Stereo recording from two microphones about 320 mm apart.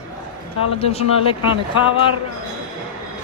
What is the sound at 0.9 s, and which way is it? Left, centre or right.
Speech, centre.